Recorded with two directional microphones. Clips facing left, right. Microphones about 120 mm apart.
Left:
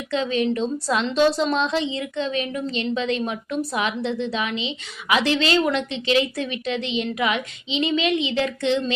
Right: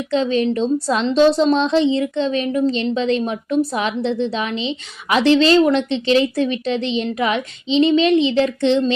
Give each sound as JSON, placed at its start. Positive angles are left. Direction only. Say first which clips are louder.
{"t": 0.1, "sound": "a woman's voice", "louder": "right 4 dB", "side_deg": -35}